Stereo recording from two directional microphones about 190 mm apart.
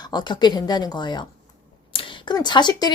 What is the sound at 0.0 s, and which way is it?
Speech, 20° left (ahead or behind).